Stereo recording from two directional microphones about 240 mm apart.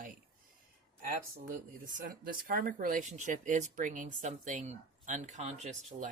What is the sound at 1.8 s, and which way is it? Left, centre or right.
Speech, right.